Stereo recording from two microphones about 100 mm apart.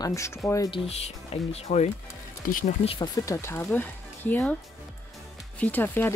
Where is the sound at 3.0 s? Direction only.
40° left (ahead or behind).